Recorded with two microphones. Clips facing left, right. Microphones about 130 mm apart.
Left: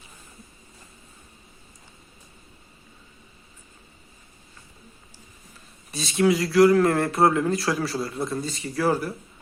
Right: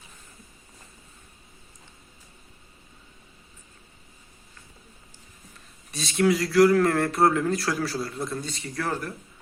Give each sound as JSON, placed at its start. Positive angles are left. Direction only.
{"t": 5.9, "sound": "a man's voice", "side_deg": 0}